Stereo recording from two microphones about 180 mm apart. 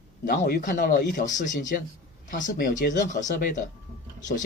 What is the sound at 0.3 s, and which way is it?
Speech, 55° left (ahead or behind).